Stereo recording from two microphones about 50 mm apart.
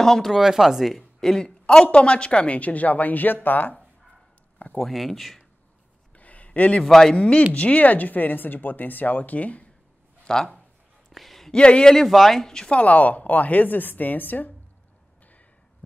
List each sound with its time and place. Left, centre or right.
0.0 s speech: centre
0.3 s a woman's voice: centre; by 3.7 s left
4.7 s speech: centre
6.1 s a sound: left
6.8 s speech: centre
7.2 s a woman's voice: left
10.2 s speech: centre
11.1 s a sound: centre
11.5 s speech: centre
12.7 s speech: left